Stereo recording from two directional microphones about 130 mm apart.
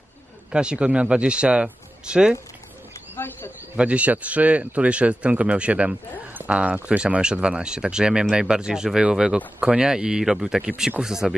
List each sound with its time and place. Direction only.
0.5 s speech: 5° right (ahead or behind)
2.9 s bird: 15° left (ahead or behind)
3.7 s speech: 10° right (ahead or behind)